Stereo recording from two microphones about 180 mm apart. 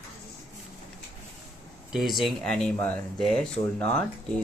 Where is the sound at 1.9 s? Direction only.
Centre (ahead or behind).